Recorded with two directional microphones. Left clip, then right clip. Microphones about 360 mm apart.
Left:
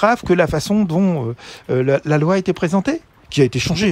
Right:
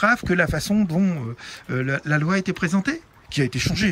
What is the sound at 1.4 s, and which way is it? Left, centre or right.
Speech, centre.